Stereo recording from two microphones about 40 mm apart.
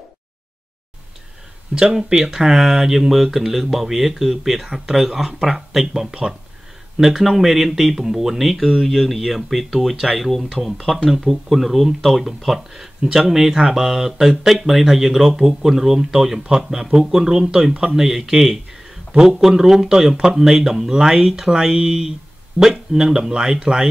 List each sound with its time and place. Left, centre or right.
1.8 s speech: centre
13.0 s speech: centre